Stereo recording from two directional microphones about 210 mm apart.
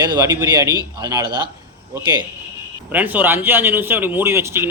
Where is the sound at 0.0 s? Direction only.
20° right (ahead or behind).